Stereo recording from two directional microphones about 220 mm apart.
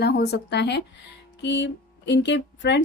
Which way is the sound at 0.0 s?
50° left (ahead or behind).